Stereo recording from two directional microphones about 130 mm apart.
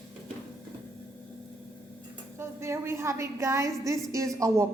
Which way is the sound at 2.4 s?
20° right (ahead or behind).